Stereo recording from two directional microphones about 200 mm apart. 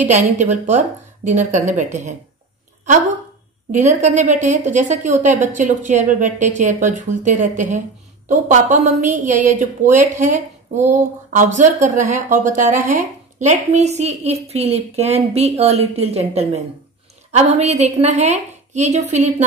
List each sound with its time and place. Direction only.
0.1 s speech: 35° right (ahead or behind)
3.7 s speech: 35° right (ahead or behind)